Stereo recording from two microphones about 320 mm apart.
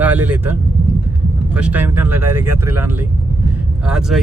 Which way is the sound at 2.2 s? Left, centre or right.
Right.